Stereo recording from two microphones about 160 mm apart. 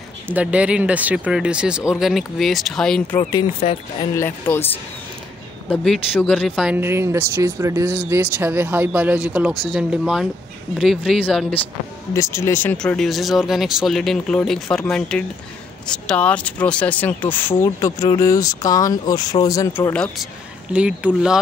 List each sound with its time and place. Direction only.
0.3 s speech: 10° right (ahead or behind)
3.6 s speech: 40° left (ahead or behind)
4.2 s speech: 15° left (ahead or behind)
5.7 s speech: 10° left (ahead or behind)
6.8 s speech: 15° right (ahead or behind)
12.1 s speech: 20° left (ahead or behind)
20.7 s speech: 5° right (ahead or behind)